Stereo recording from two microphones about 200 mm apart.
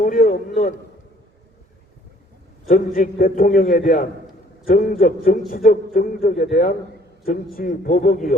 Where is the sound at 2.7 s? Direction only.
45° left (ahead or behind).